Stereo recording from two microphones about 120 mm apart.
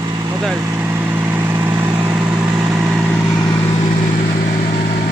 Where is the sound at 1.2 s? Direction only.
15° right (ahead or behind).